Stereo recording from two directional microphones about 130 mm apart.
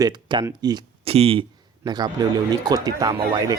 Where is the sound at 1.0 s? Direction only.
50° right (ahead or behind).